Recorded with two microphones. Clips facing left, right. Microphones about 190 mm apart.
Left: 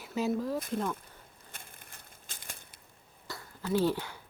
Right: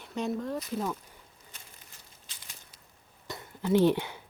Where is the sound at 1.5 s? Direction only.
55° left (ahead or behind).